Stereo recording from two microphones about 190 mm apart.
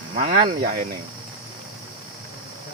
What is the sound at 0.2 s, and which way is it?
Speech, 35° right (ahead or behind).